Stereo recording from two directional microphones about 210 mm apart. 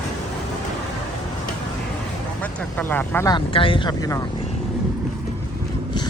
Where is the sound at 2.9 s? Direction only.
10° left (ahead or behind).